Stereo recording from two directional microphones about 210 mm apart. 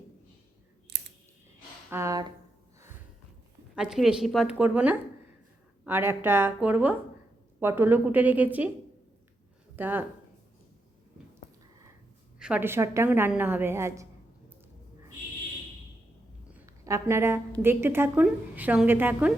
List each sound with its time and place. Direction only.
0.9 s clicking: 55° right (ahead or behind)
1.9 s a woman's voice: 15° right (ahead or behind)
3.8 s a woman's voice: centre (ahead or behind)
9.7 s a woman's voice: 10° right (ahead or behind)
12.4 s a woman's voice: 5° right (ahead or behind)
16.5 s a woman's voice: 10° right (ahead or behind)